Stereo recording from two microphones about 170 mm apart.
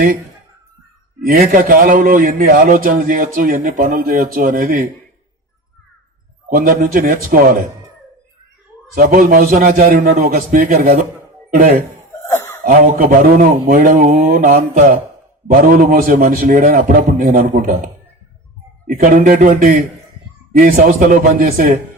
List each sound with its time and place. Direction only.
1.2 s a man's voice: 55° right (ahead or behind)
6.5 s a man's voice: 60° right (ahead or behind)
9.0 s a man's voice: 55° right (ahead or behind)
12.2 s a sound: 15° left (ahead or behind)
12.6 s a man's voice: 55° right (ahead or behind)
18.9 s a man's voice: 50° right (ahead or behind)